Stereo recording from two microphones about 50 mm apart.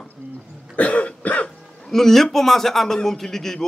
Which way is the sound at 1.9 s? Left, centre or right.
Centre.